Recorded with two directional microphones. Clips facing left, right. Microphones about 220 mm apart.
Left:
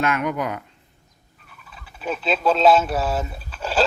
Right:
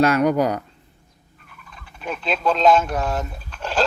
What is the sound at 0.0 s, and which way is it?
Speech, 40° right (ahead or behind).